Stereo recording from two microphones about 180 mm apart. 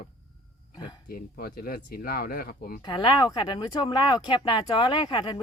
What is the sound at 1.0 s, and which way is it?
Speech, 55° left (ahead or behind).